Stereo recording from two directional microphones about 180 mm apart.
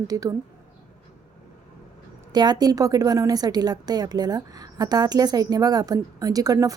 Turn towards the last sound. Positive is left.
turn(degrees=-20)  # may be behind; listen again after turning